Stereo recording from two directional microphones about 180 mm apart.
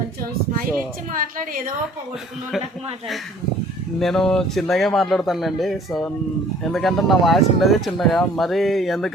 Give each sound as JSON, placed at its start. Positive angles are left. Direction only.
{"t": 1.1, "sound": "a woman's voice", "side_deg": -50}
{"t": 4.0, "sound": "speech", "side_deg": 5}